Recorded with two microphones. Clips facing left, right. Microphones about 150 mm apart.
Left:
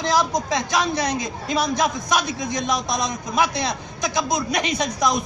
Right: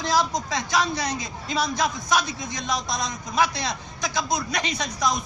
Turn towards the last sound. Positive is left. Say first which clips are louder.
# left 4 dB
turn(degrees=20)  # may be behind; listen again after turning